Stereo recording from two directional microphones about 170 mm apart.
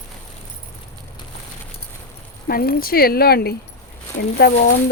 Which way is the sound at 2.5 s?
60° left (ahead or behind).